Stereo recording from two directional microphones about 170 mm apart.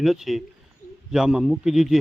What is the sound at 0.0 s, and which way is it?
A man's voice, centre (ahead or behind).